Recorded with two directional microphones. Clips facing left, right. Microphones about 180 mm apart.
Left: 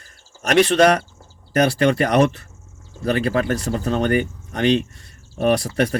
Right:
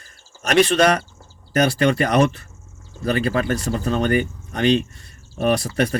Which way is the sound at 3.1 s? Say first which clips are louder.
Even; 20° left (ahead or behind).